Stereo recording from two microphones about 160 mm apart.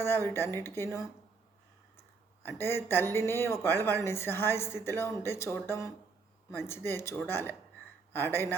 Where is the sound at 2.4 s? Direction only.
15° left (ahead or behind).